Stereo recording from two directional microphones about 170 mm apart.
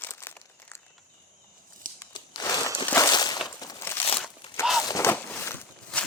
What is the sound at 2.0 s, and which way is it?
Crumpling, 20° left (ahead or behind).